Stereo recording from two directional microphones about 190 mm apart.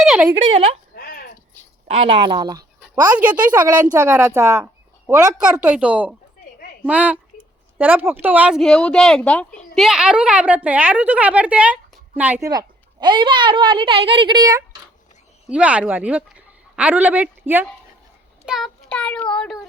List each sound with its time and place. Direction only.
0.0 s a sound: centre (ahead or behind)
0.9 s a sound: 50° left (ahead or behind)
2.1 s a woman's voice: 25° right (ahead or behind)
3.0 s a woman's voice: 10° right (ahead or behind); by 9.5 s 5° left (ahead or behind)
9.5 s a sound: 45° left (ahead or behind)
9.7 s a woman's voice: centre (ahead or behind)
12.5 s a woman's voice: 20° right (ahead or behind)
15.4 s a woman's voice: 5° right (ahead or behind)
18.4 s child singing: centre (ahead or behind)